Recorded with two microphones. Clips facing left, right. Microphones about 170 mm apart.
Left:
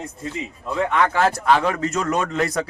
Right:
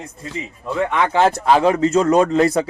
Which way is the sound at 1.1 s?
25° right (ahead or behind).